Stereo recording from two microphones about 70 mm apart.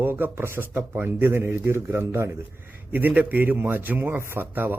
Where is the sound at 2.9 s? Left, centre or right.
Right.